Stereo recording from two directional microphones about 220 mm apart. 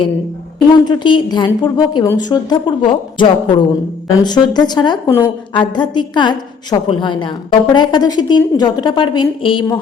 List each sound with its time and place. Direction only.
0.9 s a woman's voice: 20° left (ahead or behind)